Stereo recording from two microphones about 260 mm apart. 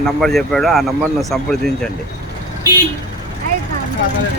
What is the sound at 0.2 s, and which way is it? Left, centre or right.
Speech, centre.